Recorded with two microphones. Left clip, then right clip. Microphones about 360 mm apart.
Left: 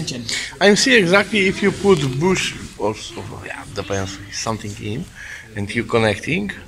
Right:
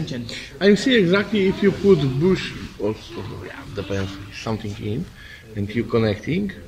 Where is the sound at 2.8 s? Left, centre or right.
Left.